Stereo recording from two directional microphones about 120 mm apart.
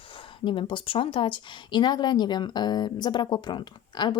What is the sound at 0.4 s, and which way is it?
A woman's voice, 45° left (ahead or behind).